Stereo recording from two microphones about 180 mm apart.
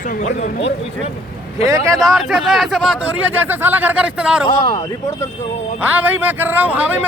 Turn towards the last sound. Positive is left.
turn(degrees=-10)  # may be behind; listen again after turning